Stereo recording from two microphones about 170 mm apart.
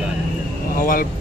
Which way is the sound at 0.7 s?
55° left (ahead or behind).